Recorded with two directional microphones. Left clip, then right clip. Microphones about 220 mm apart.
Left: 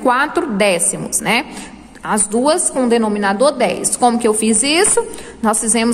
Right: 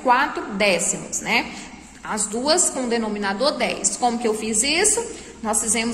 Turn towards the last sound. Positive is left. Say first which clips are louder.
# left 7 dB
turn(degrees=30)  # may be behind; listen again after turning